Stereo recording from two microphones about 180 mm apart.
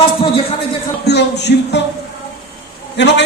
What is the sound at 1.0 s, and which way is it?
Speech, 70° left (ahead or behind).